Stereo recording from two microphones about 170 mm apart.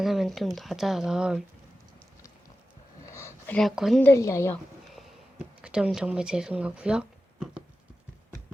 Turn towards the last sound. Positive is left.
turn(degrees=-5)  # may be behind; listen again after turning